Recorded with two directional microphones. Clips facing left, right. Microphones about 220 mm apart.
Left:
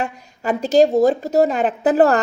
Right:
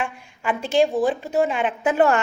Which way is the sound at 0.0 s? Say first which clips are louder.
Left 3 dB; 40° left (ahead or behind).